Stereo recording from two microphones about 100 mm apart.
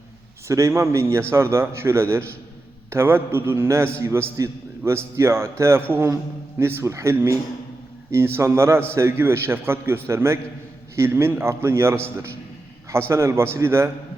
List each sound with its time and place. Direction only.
0.4 s a man's voice: 30° right (ahead or behind)